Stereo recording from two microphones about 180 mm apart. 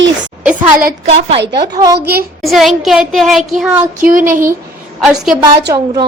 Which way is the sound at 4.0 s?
50° right (ahead or behind).